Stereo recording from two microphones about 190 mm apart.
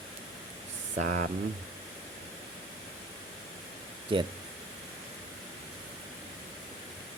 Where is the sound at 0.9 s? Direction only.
45° right (ahead or behind).